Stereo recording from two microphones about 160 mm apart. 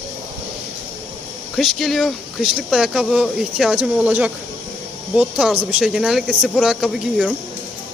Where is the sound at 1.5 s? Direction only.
Centre (ahead or behind).